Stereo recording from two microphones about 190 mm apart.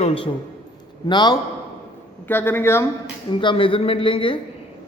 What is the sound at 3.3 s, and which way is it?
Speech, 25° left (ahead or behind).